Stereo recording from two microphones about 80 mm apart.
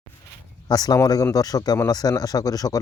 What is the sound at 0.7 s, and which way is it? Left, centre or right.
Speech, left.